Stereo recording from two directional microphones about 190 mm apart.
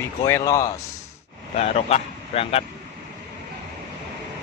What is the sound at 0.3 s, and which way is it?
Speech, 15° left (ahead or behind).